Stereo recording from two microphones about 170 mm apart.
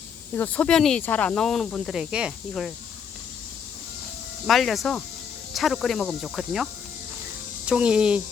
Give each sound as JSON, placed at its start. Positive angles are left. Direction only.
{"t": 0.3, "sound": "speech", "side_deg": 10}
{"t": 4.4, "sound": "speech", "side_deg": 0}
{"t": 7.7, "sound": "speech", "side_deg": -5}